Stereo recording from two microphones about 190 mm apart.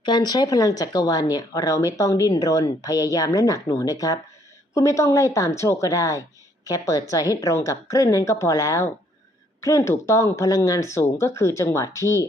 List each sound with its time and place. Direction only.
0.0 s a woman's voice: 20° left (ahead or behind)